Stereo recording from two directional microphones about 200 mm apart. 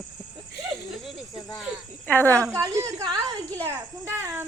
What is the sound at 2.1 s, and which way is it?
Speech, 10° left (ahead or behind).